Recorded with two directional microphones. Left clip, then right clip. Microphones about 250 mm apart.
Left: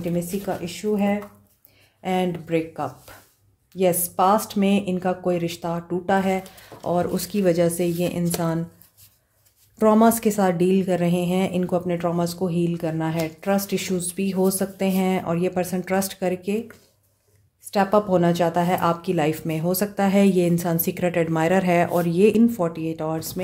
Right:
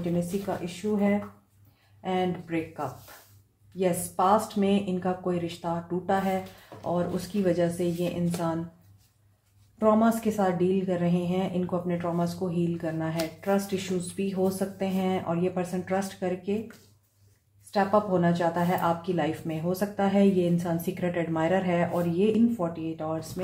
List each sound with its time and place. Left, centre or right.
0.7 s speech: left
2.0 s speech: left
9.8 s speech: left
17.6 s speech: left